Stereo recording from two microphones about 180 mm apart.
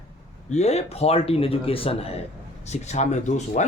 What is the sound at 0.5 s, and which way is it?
Speech, 35° left (ahead or behind).